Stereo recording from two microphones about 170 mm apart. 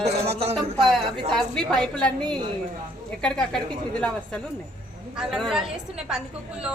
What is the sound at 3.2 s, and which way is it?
Speech, 5° left (ahead or behind).